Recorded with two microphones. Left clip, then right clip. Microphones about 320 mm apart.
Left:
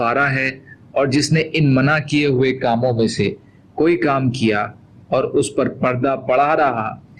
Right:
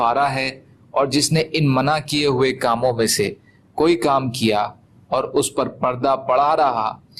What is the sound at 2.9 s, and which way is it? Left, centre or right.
Speech, right.